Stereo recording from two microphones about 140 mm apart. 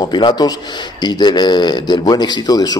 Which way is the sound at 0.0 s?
30° left (ahead or behind).